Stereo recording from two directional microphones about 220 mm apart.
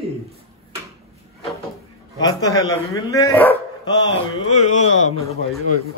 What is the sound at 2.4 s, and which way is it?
Speech, 15° left (ahead or behind).